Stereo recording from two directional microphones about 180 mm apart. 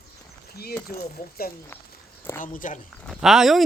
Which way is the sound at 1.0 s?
55° left (ahead or behind).